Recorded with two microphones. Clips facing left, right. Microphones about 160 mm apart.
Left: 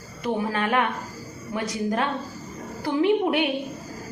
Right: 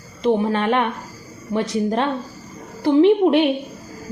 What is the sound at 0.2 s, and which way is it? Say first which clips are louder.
A woman's voice: right 7 dB; 25° right (ahead or behind).